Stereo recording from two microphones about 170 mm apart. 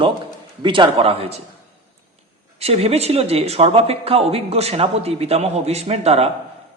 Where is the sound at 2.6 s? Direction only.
35° right (ahead or behind).